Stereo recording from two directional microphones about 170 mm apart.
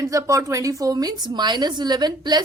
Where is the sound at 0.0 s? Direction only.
20° right (ahead or behind).